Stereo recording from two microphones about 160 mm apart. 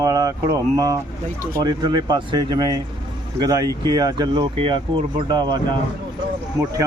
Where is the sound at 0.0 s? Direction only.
20° right (ahead or behind).